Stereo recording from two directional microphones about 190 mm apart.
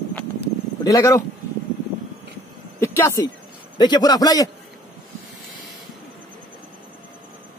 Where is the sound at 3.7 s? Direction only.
20° left (ahead or behind).